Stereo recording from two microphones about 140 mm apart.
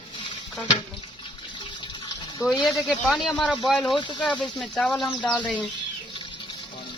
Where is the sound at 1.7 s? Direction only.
35° left (ahead or behind).